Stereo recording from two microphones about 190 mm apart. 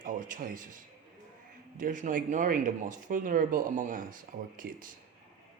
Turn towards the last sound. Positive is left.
turn(degrees=-45)  # may be behind; listen again after turning